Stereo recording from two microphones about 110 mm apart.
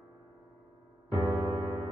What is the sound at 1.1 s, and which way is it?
Music, 35° right (ahead or behind).